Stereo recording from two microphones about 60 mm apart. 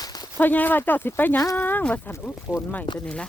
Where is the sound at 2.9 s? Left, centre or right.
Centre.